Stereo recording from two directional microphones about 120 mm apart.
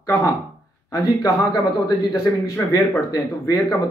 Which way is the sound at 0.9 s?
35° left (ahead or behind).